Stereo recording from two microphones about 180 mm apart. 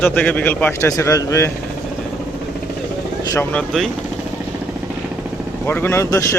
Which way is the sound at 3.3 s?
5° left (ahead or behind).